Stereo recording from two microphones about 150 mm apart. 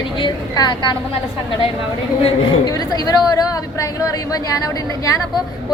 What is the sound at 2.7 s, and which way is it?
A woman's voice, 25° left (ahead or behind).